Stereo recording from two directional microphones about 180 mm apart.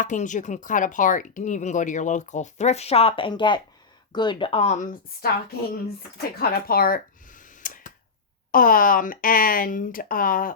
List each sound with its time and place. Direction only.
0.0 s speech: 45° left (ahead or behind)
6.4 s a sound: 55° left (ahead or behind)
8.5 s speech: 50° left (ahead or behind)